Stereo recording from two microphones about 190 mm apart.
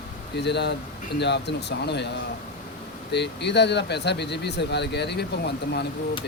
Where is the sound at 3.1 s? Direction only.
65° left (ahead or behind).